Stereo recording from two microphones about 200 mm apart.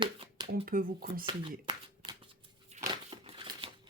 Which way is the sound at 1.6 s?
25° right (ahead or behind).